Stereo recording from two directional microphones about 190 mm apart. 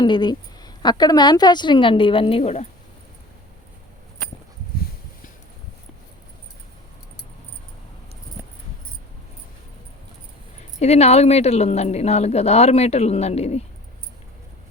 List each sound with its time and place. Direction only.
0.0 s a woman's voice: 25° left (ahead or behind)
10.8 s speech: 35° left (ahead or behind)